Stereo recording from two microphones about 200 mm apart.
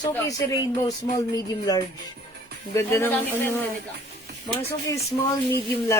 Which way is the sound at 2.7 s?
15° left (ahead or behind).